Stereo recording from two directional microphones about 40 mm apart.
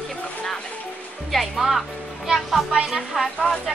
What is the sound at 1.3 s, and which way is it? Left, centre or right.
Speech, centre.